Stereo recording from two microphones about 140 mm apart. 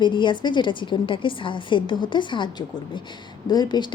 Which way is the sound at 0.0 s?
35° left (ahead or behind).